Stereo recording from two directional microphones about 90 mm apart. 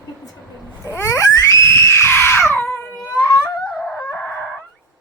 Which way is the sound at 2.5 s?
25° left (ahead or behind).